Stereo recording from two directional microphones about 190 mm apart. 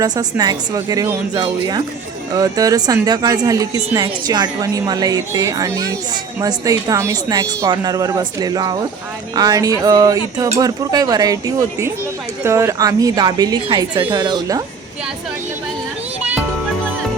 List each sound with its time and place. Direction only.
0.0 s speech: 20° right (ahead or behind)
12.5 s speech: 15° right (ahead or behind)